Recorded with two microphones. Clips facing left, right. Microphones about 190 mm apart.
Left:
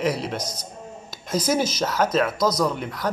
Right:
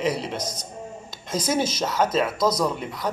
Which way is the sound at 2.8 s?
Centre (ahead or behind).